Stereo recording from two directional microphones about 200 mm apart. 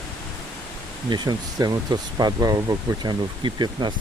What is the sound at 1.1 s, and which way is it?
Speech, 20° right (ahead or behind).